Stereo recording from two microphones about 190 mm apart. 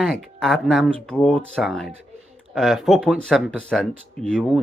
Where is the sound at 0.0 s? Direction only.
5° left (ahead or behind).